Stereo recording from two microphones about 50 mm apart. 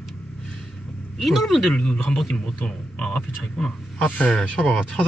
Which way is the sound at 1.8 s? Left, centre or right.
Centre.